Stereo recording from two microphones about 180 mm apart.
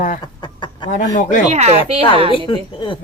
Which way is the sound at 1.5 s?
35° right (ahead or behind).